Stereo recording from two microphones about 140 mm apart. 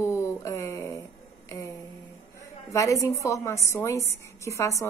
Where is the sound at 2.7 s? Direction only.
20° left (ahead or behind).